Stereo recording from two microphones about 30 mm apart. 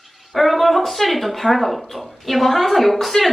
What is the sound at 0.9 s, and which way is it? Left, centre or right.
A child's voice, centre.